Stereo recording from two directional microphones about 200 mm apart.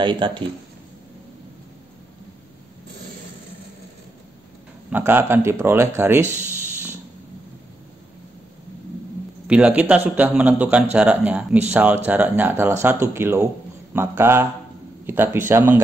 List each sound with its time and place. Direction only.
0.0 s speech: 25° right (ahead or behind)
4.9 s a man's voice: 10° right (ahead or behind)
9.5 s a man's voice: 5° right (ahead or behind)